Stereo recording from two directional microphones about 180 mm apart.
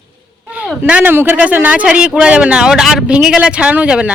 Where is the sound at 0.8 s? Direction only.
10° right (ahead or behind).